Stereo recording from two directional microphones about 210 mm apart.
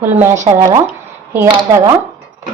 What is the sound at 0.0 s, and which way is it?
A woman's voice, 10° right (ahead or behind).